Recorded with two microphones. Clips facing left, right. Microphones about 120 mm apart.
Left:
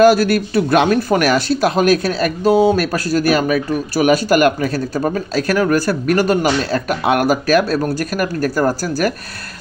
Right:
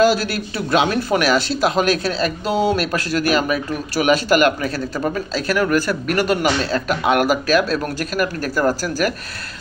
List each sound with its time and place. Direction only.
0.0 s speech: 50° left (ahead or behind)